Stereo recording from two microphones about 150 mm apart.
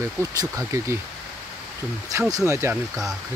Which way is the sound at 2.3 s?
20° right (ahead or behind).